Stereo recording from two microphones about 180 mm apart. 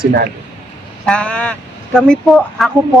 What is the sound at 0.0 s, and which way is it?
Speech, 55° right (ahead or behind).